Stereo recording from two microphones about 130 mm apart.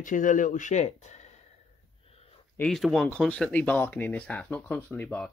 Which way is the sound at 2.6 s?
5° left (ahead or behind).